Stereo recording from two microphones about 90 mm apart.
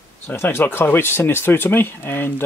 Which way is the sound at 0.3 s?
25° left (ahead or behind).